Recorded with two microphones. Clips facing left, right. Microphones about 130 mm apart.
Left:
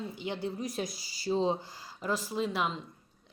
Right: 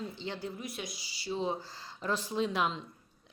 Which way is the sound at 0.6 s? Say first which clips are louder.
Left 6 dB; 40° left (ahead or behind).